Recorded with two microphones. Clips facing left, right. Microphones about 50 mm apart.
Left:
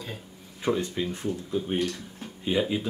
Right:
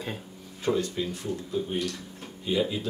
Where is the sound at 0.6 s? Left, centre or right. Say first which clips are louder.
Even; centre.